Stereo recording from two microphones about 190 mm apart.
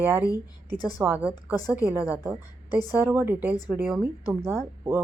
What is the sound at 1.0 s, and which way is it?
A woman's voice, 10° right (ahead or behind).